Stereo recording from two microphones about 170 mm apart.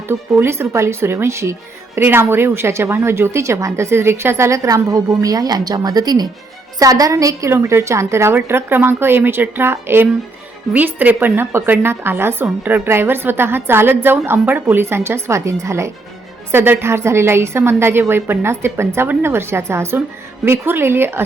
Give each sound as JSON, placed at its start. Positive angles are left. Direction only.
{"t": 0.1, "sound": "a woman's voice", "side_deg": -15}